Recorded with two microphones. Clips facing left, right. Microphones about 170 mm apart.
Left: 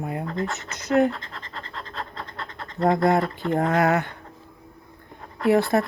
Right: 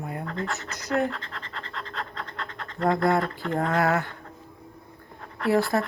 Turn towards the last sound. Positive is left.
turn(degrees=20)  # may be behind; listen again after turning